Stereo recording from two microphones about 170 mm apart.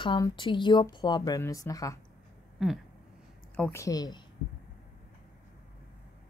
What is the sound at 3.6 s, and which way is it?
Speech, 15° left (ahead or behind).